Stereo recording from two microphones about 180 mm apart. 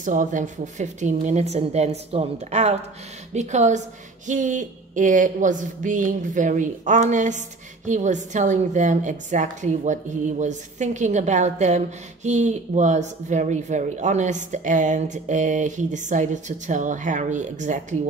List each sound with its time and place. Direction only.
0.0 s a woman's voice: 45° right (ahead or behind)